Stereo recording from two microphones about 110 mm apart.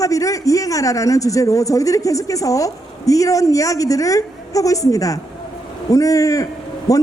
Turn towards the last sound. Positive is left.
turn(degrees=30)  # may be behind; listen again after turning